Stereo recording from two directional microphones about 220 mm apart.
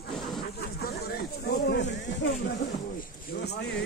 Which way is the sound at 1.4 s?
50° left (ahead or behind).